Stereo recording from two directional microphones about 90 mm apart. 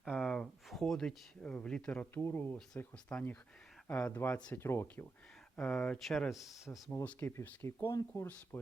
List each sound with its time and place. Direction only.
0.2 s speech: 5° left (ahead or behind); by 5.0 s 25° left (ahead or behind)
5.5 s speech: 15° left (ahead or behind)
6.0 s speech: centre (ahead or behind)
7.0 s speech: 20° left (ahead or behind)